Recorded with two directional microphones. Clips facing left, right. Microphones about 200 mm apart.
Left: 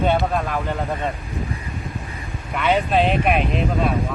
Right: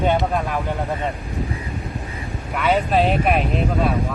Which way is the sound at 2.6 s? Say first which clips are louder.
Even; 5° right (ahead or behind).